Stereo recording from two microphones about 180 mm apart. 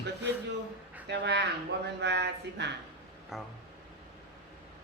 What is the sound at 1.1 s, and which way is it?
Speech, 70° right (ahead or behind).